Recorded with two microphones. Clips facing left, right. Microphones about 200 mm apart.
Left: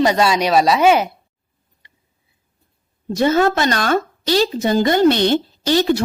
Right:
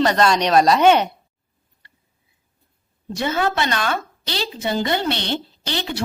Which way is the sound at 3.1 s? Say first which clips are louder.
Left 6 dB; 45° left (ahead or behind).